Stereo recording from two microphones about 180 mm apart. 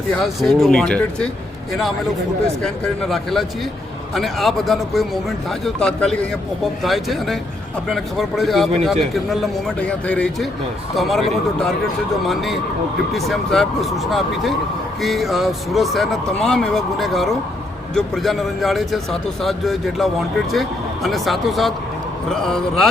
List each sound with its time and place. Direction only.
0.2 s a man's voice: centre (ahead or behind)
2.6 s a man's voice: 5° left (ahead or behind)
12.2 s a man's voice: centre (ahead or behind)